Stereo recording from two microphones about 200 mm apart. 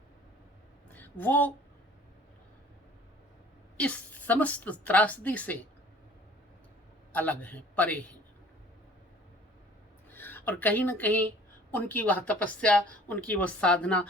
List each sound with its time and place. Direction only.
0.9 s a woman's voice: 10° left (ahead or behind)
3.8 s speech: 5° left (ahead or behind)
7.1 s speech: 5° left (ahead or behind)
10.1 s speech: 10° left (ahead or behind)